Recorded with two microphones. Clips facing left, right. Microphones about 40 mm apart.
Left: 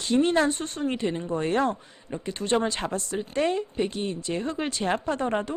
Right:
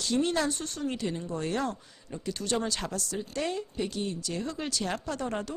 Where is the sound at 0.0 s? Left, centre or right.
Left.